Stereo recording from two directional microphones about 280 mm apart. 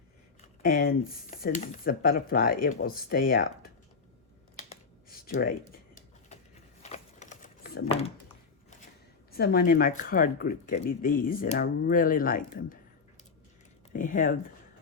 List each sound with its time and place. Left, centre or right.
0.6 s speech: left
4.5 s computer keyboard: left
5.4 s a sound: left
9.3 s speech: left
13.9 s speech: left